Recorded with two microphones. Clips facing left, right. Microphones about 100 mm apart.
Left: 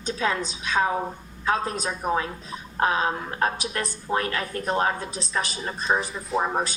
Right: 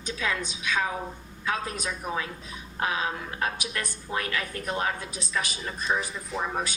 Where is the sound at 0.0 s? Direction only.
35° left (ahead or behind).